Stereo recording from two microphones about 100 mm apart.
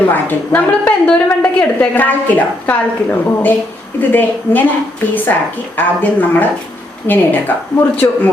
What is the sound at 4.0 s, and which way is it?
A woman's voice, 20° left (ahead or behind).